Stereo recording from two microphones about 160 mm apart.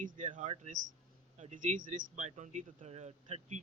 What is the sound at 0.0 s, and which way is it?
A man's voice, 55° right (ahead or behind).